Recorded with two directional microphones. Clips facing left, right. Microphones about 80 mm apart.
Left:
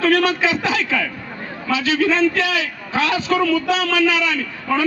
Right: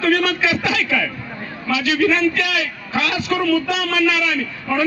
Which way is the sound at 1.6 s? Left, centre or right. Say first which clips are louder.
Even; left.